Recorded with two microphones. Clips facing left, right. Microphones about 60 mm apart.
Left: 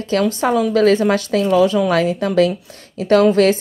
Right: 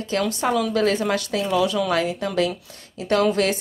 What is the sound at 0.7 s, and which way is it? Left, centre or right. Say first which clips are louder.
A woman's voice: left 7 dB; left.